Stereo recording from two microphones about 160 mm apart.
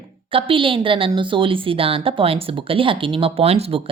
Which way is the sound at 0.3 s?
35° right (ahead or behind).